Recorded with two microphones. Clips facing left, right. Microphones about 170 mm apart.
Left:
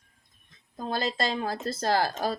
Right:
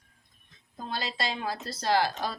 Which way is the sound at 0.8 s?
45° left (ahead or behind).